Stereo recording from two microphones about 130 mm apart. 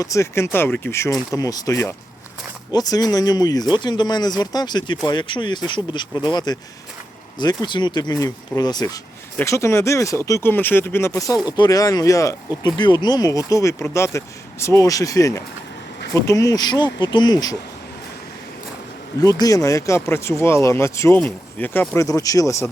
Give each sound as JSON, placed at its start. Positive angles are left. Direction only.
{"t": 0.0, "sound": "speech", "side_deg": 25}
{"t": 11.4, "sound": "speech", "side_deg": 30}
{"t": 19.2, "sound": "speech", "side_deg": 30}